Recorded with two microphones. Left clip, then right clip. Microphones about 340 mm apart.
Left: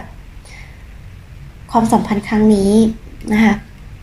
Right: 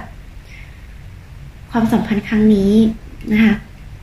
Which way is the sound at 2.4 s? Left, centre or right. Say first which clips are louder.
Left 1 dB; left.